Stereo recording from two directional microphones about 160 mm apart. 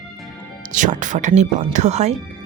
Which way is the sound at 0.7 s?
50° right (ahead or behind).